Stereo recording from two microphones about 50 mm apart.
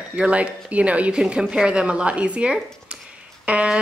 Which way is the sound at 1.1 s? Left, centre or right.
Centre.